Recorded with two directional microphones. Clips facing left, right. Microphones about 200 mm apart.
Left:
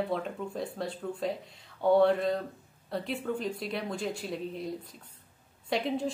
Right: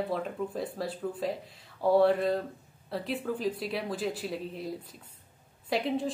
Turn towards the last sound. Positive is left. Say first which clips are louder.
# right 1 dB
turn(degrees=0)  # may be behind; listen again after turning